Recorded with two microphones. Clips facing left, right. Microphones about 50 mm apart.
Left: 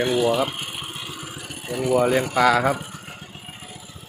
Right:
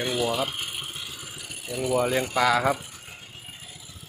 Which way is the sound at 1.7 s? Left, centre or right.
Left.